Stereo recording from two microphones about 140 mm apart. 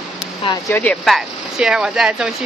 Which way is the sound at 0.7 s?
15° left (ahead or behind).